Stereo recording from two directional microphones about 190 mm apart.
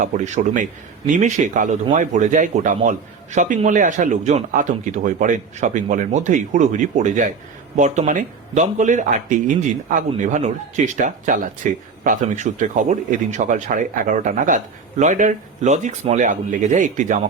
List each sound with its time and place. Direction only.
0.0 s speech: 40° right (ahead or behind)